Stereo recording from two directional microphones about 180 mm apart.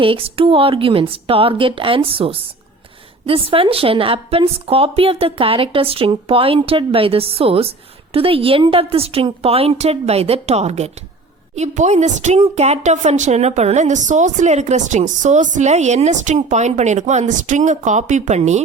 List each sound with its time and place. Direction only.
0.0 s a woman's voice: 30° right (ahead or behind)